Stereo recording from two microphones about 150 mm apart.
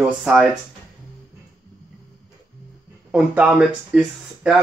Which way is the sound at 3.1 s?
10° right (ahead or behind).